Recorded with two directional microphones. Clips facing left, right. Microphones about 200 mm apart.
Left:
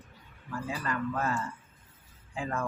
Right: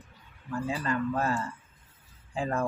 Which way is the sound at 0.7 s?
30° right (ahead or behind).